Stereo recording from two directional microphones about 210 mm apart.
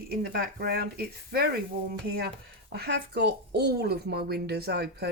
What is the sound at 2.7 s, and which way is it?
Speech, 50° right (ahead or behind).